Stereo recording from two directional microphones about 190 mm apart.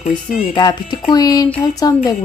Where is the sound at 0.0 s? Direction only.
35° left (ahead or behind).